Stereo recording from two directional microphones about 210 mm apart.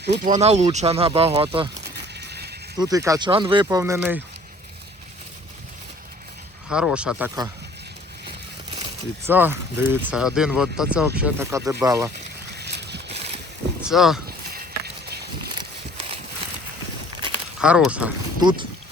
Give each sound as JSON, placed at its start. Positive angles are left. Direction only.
{"t": 0.0, "sound": "speech", "side_deg": -55}
{"t": 0.3, "sound": "speech", "side_deg": -30}
{"t": 2.1, "sound": "a sound", "side_deg": -50}
{"t": 2.7, "sound": "speech", "side_deg": -15}
{"t": 6.7, "sound": "speech", "side_deg": -5}
{"t": 9.2, "sound": "speech", "side_deg": -10}
{"t": 12.5, "sound": "a sound", "side_deg": -50}
{"t": 13.1, "sound": "boat", "side_deg": -30}
{"t": 13.8, "sound": "speech", "side_deg": 0}
{"t": 14.3, "sound": "a sound", "side_deg": -50}
{"t": 15.5, "sound": "a sound", "side_deg": -25}
{"t": 17.6, "sound": "speech", "side_deg": -5}
{"t": 18.3, "sound": "speech", "side_deg": -20}